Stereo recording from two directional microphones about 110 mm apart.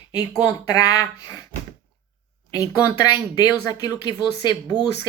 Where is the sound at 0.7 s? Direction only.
35° left (ahead or behind).